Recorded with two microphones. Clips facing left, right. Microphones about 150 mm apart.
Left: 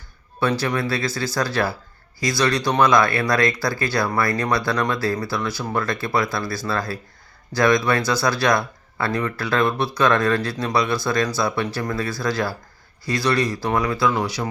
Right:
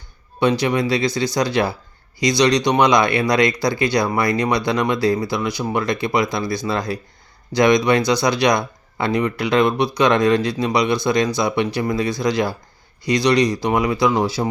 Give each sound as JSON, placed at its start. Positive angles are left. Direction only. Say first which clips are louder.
{"t": 0.3, "sound": "speech", "louder": "right 4 dB", "side_deg": -15}